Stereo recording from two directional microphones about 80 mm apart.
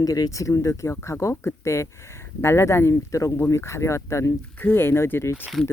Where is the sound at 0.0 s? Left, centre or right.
Left.